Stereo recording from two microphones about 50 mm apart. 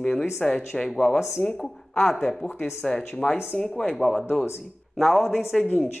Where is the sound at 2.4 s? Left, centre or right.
Centre.